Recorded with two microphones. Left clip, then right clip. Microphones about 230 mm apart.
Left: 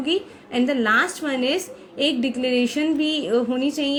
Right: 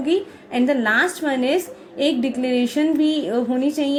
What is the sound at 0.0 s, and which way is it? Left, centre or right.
A woman's voice, left.